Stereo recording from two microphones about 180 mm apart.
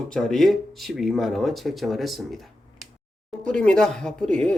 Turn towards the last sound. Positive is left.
turn(degrees=5)  # may be behind; listen again after turning